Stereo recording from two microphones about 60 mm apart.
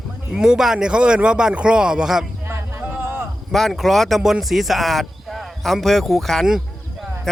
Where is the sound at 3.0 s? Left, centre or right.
Right.